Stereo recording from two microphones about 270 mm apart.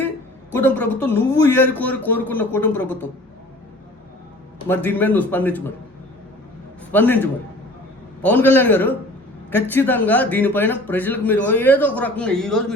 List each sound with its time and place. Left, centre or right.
0.5 s speech: centre
4.7 s speech: centre
6.9 s speech: centre